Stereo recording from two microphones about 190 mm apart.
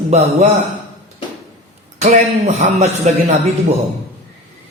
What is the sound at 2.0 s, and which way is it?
A man's voice, 35° right (ahead or behind).